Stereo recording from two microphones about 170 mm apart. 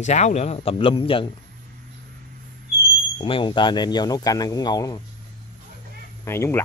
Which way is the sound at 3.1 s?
30° left (ahead or behind).